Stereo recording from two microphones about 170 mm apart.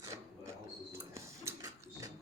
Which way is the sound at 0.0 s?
20° right (ahead or behind).